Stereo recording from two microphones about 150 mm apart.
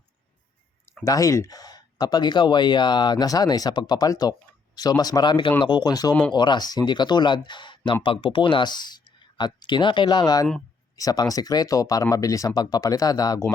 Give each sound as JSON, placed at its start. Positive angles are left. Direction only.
{"t": 1.0, "sound": "speech", "side_deg": 20}